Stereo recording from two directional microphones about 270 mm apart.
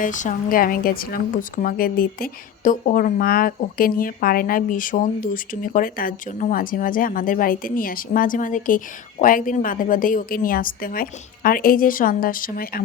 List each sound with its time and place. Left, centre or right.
0.0 s a woman's voice: left